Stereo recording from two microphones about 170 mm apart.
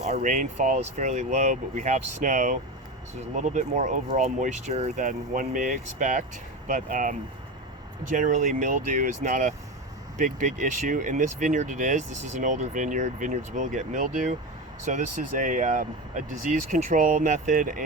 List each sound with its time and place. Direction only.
0.0 s speech: 45° right (ahead or behind)